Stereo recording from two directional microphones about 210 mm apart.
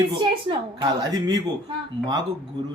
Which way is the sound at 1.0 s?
20° right (ahead or behind).